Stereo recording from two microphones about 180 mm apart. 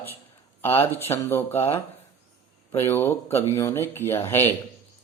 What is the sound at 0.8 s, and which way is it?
A man's voice, 15° left (ahead or behind).